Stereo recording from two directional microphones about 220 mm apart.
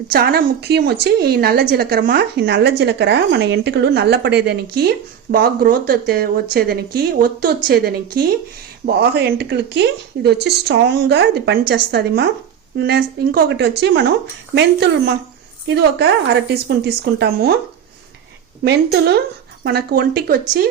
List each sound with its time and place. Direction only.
0.1 s a woman's voice: 45° right (ahead or behind)
18.6 s a woman's voice: 50° right (ahead or behind)